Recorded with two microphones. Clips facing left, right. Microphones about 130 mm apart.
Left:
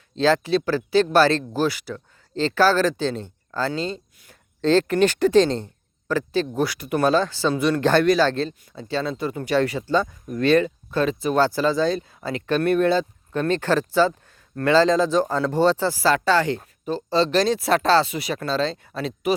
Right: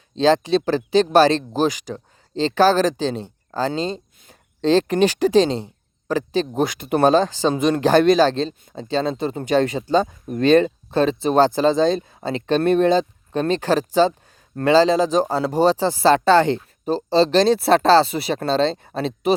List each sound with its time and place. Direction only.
0.2 s speech: 20° right (ahead or behind)